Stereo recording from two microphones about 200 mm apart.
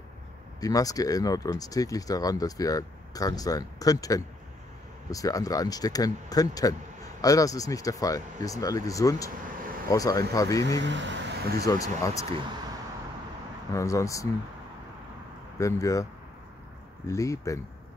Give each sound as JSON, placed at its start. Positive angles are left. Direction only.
{"t": 0.6, "sound": "speech", "side_deg": 20}
{"t": 10.8, "sound": "speech", "side_deg": -65}
{"t": 11.6, "sound": "speech", "side_deg": 15}
{"t": 13.7, "sound": "speech", "side_deg": 15}
{"t": 15.6, "sound": "speech", "side_deg": 15}
{"t": 17.1, "sound": "speech", "side_deg": 15}